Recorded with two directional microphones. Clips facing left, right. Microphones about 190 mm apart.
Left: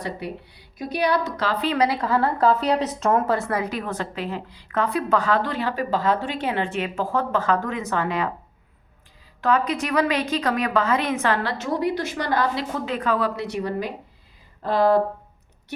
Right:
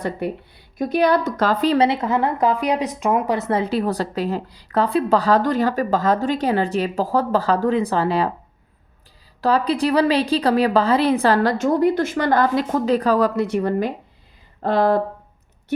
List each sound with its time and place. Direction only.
0.2 s a woman's voice: 50° right (ahead or behind)
1.8 s a woman's voice: 20° right (ahead or behind)
9.4 s a woman's voice: 35° right (ahead or behind); by 14.9 s 55° right (ahead or behind)